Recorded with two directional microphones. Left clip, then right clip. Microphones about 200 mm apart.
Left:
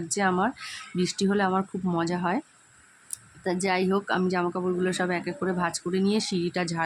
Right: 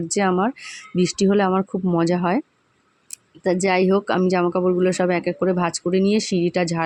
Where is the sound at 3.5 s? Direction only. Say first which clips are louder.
Right 8 dB; 25° right (ahead or behind).